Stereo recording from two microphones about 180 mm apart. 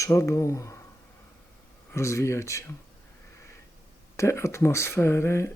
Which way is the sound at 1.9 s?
15° left (ahead or behind).